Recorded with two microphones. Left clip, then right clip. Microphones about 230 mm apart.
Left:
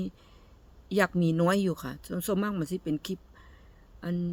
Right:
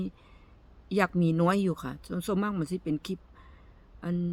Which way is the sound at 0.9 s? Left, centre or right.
Centre.